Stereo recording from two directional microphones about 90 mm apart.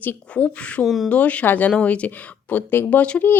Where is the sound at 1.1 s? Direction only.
15° left (ahead or behind).